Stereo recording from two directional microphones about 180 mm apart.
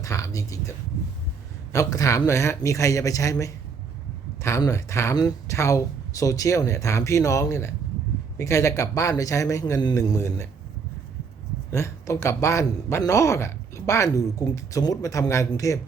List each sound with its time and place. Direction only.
0.0 s speech: 20° left (ahead or behind)
1.7 s speech: 20° left (ahead or behind)
11.7 s speech: 15° left (ahead or behind)